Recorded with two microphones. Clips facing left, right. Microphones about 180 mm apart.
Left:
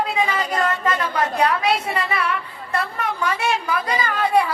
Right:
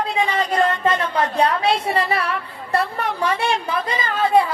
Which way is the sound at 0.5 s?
30° right (ahead or behind).